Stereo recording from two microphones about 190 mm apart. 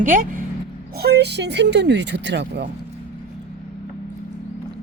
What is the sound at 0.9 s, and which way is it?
Speech, 55° right (ahead or behind).